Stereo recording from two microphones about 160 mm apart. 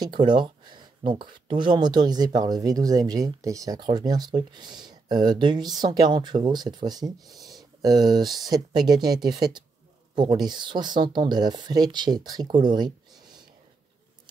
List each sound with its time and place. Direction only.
0.2 s speech: 30° right (ahead or behind)
7.2 s a sound: centre (ahead or behind)
7.8 s speech: 25° right (ahead or behind)